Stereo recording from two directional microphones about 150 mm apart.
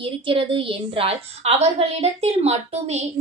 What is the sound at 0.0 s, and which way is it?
A woman's voice, 35° right (ahead or behind).